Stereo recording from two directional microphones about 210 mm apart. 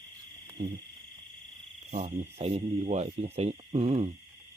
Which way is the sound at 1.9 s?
30° right (ahead or behind).